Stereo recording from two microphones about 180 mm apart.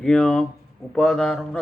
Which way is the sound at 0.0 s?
5° left (ahead or behind).